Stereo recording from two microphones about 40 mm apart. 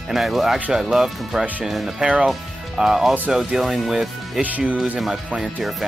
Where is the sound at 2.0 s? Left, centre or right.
Right.